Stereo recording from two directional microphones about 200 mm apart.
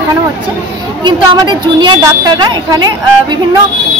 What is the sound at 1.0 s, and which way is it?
A woman's voice, 20° right (ahead or behind).